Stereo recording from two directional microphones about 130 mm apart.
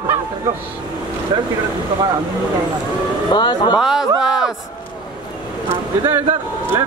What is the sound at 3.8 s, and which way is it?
Speech, 5° right (ahead or behind).